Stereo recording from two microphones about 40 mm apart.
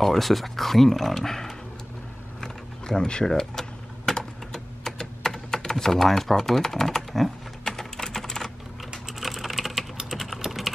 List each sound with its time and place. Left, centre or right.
0.0 s speech: centre
2.4 s a sound: centre
3.3 s typing: centre
9.2 s typing: centre